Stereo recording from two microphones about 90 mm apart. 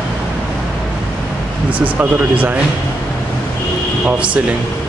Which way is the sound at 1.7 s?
15° right (ahead or behind).